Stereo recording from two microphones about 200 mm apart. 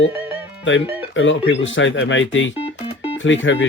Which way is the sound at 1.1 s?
70° left (ahead or behind).